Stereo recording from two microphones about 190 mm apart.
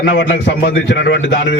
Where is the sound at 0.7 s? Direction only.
65° left (ahead or behind).